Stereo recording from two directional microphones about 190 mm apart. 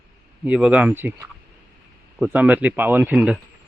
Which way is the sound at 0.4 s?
5° right (ahead or behind).